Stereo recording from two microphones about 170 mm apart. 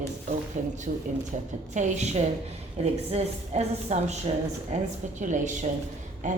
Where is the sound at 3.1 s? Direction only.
40° right (ahead or behind).